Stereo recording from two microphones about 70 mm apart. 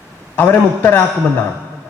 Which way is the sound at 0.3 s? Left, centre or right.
Left.